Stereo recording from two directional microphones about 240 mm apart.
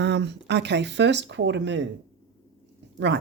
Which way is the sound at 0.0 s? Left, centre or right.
Right.